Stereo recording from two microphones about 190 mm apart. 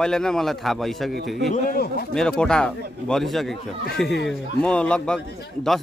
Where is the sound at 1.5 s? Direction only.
55° left (ahead or behind).